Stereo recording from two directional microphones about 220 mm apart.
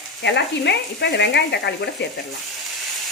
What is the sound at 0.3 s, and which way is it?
Speech, 50° left (ahead or behind).